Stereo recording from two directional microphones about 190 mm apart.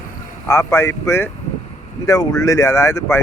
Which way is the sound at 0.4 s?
15° left (ahead or behind).